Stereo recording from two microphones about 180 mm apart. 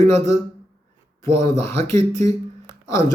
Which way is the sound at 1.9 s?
40° right (ahead or behind).